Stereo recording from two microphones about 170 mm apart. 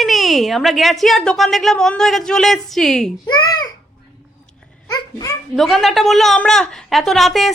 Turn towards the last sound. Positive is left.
turn(degrees=0)  # may be behind; listen again after turning